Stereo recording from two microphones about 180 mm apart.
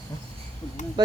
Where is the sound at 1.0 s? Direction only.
20° right (ahead or behind).